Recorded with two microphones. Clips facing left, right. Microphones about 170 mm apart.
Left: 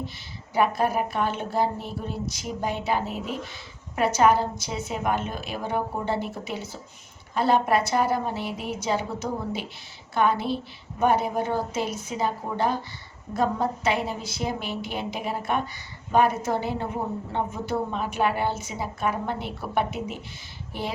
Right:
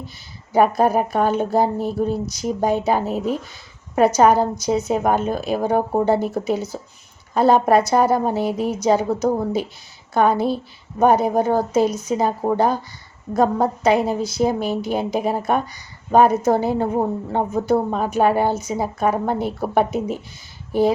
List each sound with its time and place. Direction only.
0.5 s a woman's voice: 40° right (ahead or behind)